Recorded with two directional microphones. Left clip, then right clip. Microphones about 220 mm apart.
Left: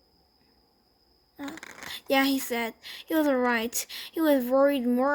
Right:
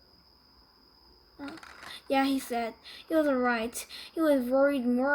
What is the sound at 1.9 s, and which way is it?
Speech, 40° left (ahead or behind).